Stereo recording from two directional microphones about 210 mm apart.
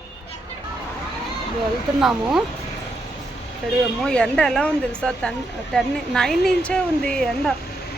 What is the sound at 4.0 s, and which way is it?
Speech, 5° left (ahead or behind).